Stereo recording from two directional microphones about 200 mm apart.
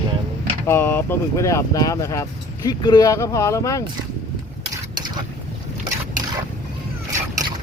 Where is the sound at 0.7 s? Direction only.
10° left (ahead or behind).